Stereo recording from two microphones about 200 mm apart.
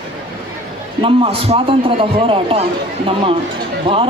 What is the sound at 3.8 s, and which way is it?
Speech, 25° right (ahead or behind).